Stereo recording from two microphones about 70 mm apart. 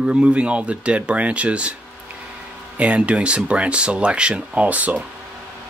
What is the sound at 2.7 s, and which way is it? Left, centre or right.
Speech, centre.